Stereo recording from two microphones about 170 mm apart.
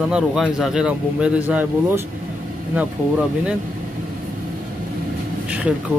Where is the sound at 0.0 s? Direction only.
5° right (ahead or behind).